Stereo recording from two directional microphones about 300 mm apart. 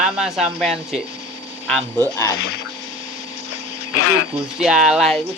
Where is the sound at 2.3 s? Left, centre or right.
Left.